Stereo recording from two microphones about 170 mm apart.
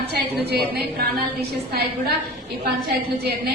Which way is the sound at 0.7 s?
65° right (ahead or behind).